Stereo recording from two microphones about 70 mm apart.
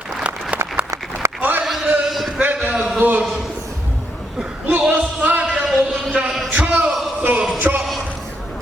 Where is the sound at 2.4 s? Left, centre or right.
Right.